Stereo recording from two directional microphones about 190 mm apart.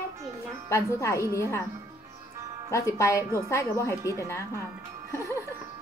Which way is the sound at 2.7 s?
15° left (ahead or behind).